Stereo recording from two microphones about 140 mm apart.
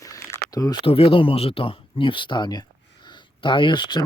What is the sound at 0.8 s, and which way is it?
Speech, 40° left (ahead or behind).